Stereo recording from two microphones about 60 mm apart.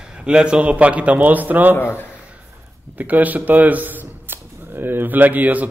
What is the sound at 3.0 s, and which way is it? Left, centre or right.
A man's voice, right.